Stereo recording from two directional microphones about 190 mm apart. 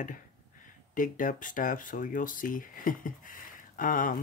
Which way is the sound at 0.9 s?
45° left (ahead or behind).